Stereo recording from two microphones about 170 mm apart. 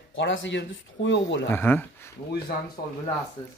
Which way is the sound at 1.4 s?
10° left (ahead or behind).